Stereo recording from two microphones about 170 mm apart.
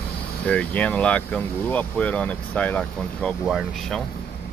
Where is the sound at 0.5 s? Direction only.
5° left (ahead or behind).